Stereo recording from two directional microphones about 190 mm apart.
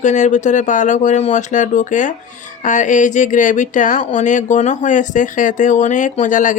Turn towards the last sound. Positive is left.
turn(degrees=40)  # may be behind; listen again after turning